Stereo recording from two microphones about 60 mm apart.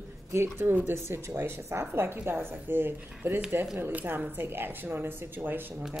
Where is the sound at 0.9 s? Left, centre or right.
Right.